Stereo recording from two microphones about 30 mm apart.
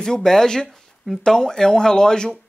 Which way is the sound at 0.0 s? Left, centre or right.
Centre.